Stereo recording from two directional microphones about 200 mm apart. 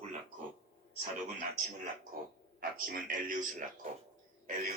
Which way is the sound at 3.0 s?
40° right (ahead or behind).